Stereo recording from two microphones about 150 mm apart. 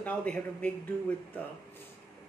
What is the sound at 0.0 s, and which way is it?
Speech, 10° left (ahead or behind).